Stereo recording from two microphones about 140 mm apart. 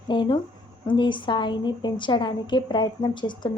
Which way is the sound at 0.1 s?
35° left (ahead or behind).